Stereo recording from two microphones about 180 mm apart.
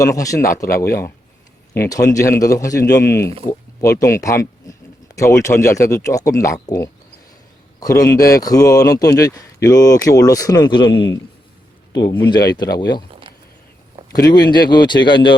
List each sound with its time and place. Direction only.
0.0 s speech: 20° left (ahead or behind)
1.7 s speech: 15° left (ahead or behind)
14.1 s speech: 20° left (ahead or behind)